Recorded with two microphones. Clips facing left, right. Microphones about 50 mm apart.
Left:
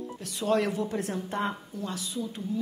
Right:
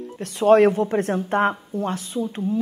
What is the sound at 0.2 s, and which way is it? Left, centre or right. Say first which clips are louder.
A woman's voice: right 12 dB; right.